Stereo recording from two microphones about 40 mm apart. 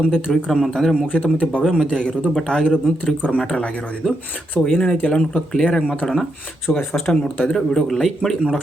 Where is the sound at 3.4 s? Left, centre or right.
Centre.